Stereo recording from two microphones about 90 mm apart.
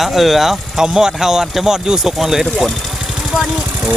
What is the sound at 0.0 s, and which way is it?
Speech, centre (ahead or behind).